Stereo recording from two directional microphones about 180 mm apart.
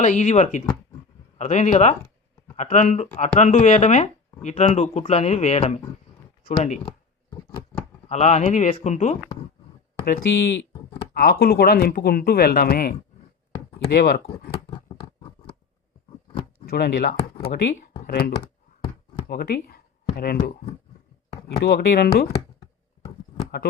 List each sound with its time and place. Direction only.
0.0 s speech: 40° left (ahead or behind)
8.1 s speech: 40° left (ahead or behind)
10.1 s speech: 55° left (ahead or behind)
14.5 s a sound: 25° left (ahead or behind)
16.6 s speech: 60° left (ahead or behind)
21.6 s speech: 65° left (ahead or behind)